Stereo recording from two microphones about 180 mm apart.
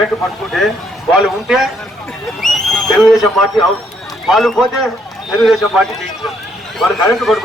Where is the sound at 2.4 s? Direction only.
Centre (ahead or behind).